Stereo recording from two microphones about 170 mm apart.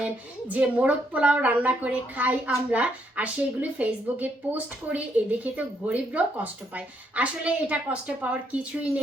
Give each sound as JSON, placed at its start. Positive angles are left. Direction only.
{"t": 0.0, "sound": "a woman's voice", "side_deg": -10}